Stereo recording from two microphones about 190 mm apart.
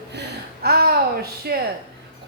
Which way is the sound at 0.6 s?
55° right (ahead or behind).